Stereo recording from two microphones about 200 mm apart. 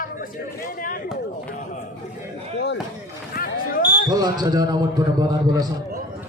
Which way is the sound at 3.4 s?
50° left (ahead or behind).